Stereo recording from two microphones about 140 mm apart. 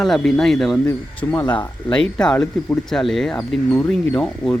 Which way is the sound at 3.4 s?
15° left (ahead or behind).